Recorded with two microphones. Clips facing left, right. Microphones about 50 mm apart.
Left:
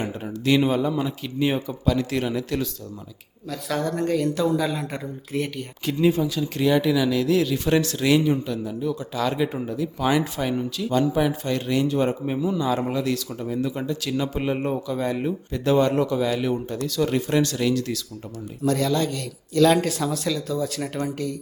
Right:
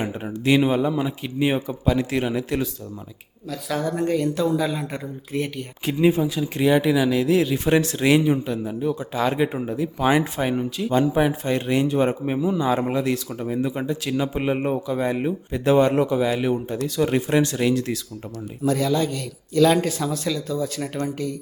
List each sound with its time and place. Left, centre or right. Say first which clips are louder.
0.0 s speech: right 2 dB; centre
3.5 s speech: right 1 dB; centre
5.8 s speech: right 2 dB; right
18.6 s speech: right 1 dB; centre